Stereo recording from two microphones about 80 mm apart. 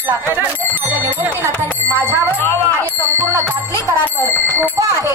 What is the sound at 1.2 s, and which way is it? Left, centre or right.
Bicycle bell, right.